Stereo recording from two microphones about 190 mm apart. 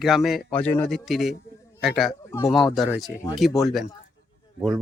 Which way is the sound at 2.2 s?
15° left (ahead or behind).